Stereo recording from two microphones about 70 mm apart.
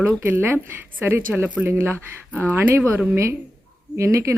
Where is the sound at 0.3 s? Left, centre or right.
Right.